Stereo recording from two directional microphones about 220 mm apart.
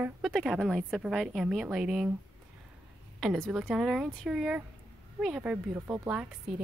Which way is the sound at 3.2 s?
Centre (ahead or behind).